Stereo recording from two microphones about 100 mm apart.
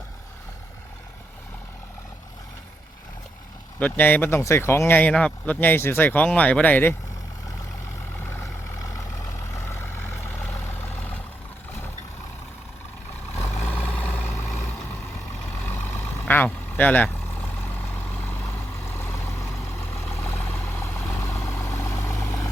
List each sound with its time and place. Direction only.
3.8 s speech: 15° left (ahead or behind)
8.1 s vehicle: 20° left (ahead or behind)
8.8 s vehicle: 35° left (ahead or behind); by 11.2 s 20° left (ahead or behind)
13.9 s vehicle: 15° left (ahead or behind)
20.4 s vehicle: 15° left (ahead or behind)